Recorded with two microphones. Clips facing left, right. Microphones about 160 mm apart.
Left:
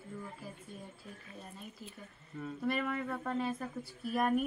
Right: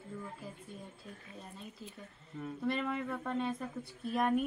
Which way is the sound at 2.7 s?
5° left (ahead or behind).